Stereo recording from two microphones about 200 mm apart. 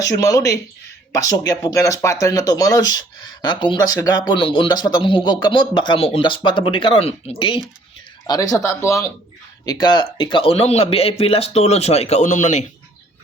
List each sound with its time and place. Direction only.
0.0 s speech: 15° left (ahead or behind); by 12.6 s 35° left (ahead or behind)